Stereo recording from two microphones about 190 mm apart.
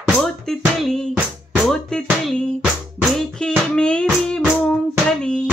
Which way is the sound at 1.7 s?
5° left (ahead or behind).